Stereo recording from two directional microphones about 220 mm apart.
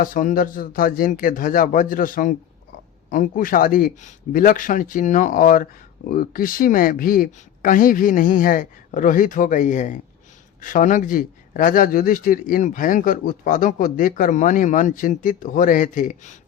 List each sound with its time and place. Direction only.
0.0 s a man's voice: 40° left (ahead or behind)